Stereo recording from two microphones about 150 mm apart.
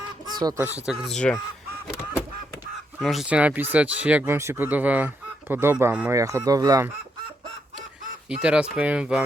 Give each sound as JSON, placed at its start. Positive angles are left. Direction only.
{"t": 0.3, "sound": "speech", "side_deg": -25}
{"t": 0.9, "sound": "speech", "side_deg": 0}
{"t": 3.0, "sound": "speech", "side_deg": 0}
{"t": 8.3, "sound": "speech", "side_deg": -5}